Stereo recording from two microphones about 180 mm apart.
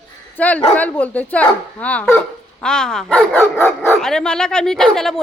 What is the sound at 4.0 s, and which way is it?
Speech, 5° left (ahead or behind).